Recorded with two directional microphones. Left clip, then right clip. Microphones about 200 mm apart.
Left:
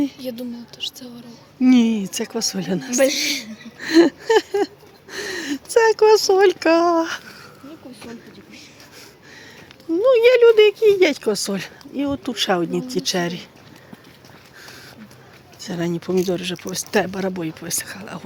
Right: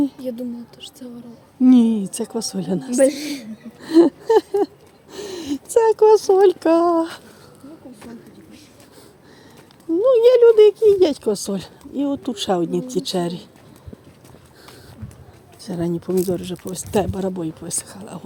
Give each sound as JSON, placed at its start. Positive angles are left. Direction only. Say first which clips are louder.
{"t": 0.2, "sound": "speech", "louder": "right 2 dB", "side_deg": -55}
{"t": 1.6, "sound": "speech", "louder": "right 2 dB", "side_deg": -25}
{"t": 2.9, "sound": "a woman's voice", "louder": "even", "side_deg": -40}
{"t": 3.8, "sound": "speech", "louder": "even", "side_deg": -15}
{"t": 5.2, "sound": "a sound", "louder": "left 3 dB", "side_deg": -25}
{"t": 5.5, "sound": "a sound", "louder": "even", "side_deg": 5}
{"t": 5.8, "sound": "speech", "louder": "right 1 dB", "side_deg": -20}
{"t": 10.0, "sound": "speech", "louder": "right 1 dB", "side_deg": -20}
{"t": 11.9, "sound": "speech", "louder": "left 1 dB", "side_deg": 5}
{"t": 15.6, "sound": "speech", "louder": "even", "side_deg": -20}
{"t": 16.9, "sound": "speech", "louder": "even", "side_deg": 10}
{"t": 17.4, "sound": "speech", "louder": "left 1 dB", "side_deg": -15}